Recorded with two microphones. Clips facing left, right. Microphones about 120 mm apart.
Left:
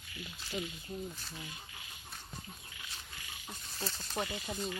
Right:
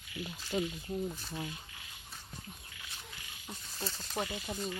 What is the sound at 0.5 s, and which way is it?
Speech, 35° right (ahead or behind).